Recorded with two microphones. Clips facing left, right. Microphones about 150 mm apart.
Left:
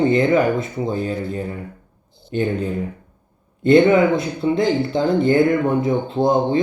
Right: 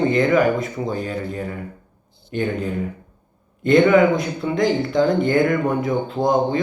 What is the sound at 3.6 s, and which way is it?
Speech, 30° left (ahead or behind).